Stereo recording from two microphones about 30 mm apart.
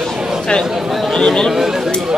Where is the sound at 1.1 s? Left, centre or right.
Left.